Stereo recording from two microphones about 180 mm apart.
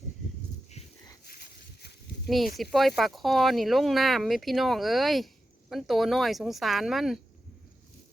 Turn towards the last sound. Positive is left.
turn(degrees=0)  # may be behind; listen again after turning